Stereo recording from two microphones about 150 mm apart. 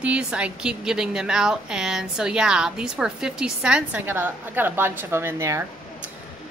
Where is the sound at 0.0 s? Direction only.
5° right (ahead or behind).